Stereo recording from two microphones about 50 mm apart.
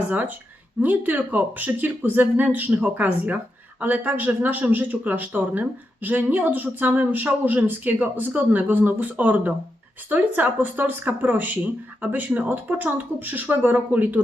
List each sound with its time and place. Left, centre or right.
0.1 s speech: right